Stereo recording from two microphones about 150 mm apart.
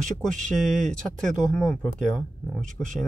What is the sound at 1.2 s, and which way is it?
Speech, 5° left (ahead or behind).